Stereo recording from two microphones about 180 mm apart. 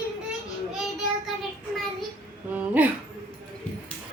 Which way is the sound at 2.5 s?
10° right (ahead or behind).